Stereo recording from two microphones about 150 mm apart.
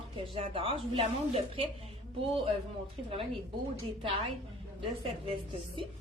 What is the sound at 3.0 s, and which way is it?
Speech, 35° right (ahead or behind).